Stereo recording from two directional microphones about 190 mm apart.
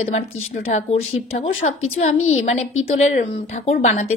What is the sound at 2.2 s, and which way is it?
Speech, 90° left.